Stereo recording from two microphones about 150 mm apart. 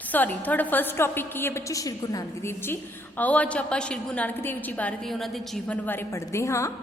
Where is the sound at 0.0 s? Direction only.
10° left (ahead or behind).